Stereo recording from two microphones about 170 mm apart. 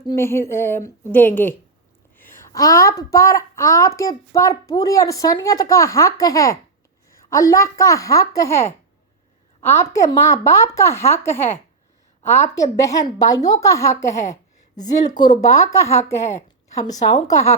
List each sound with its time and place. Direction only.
0.1 s a woman's voice: 15° left (ahead or behind)
12.8 s a woman's voice: 20° left (ahead or behind)